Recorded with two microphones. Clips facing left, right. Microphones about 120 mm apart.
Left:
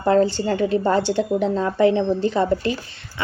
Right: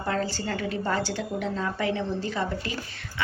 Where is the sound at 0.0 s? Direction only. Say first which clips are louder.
Left 11 dB; 25° left (ahead or behind).